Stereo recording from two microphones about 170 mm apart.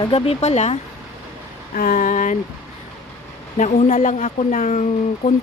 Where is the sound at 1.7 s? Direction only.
50° left (ahead or behind).